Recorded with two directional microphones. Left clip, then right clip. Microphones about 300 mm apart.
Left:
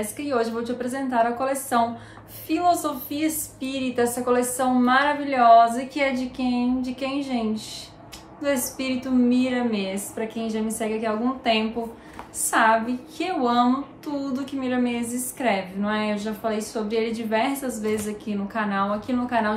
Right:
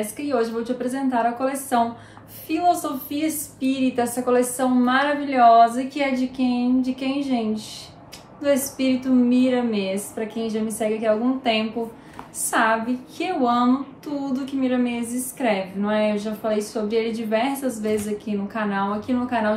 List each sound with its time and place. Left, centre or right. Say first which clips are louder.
0.2 s a woman's voice: right 1 dB; centre
8.7 s a woman's voice: right 4 dB; centre